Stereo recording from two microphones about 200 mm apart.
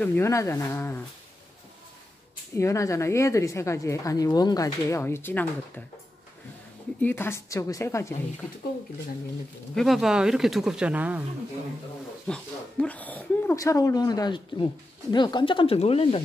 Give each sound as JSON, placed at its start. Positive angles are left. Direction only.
{"t": 0.0, "sound": "a woman's voice", "side_deg": 10}
{"t": 2.5, "sound": "a woman's voice", "side_deg": 15}
{"t": 7.0, "sound": "a woman's voice", "side_deg": 10}
{"t": 9.8, "sound": "speech", "side_deg": 0}
{"t": 12.3, "sound": "speech", "side_deg": 5}